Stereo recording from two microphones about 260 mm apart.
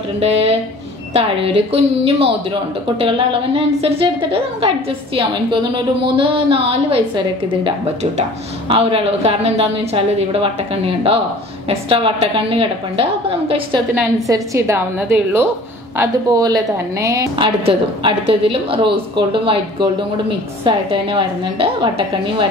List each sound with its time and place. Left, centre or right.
0.2 s a woman's voice: right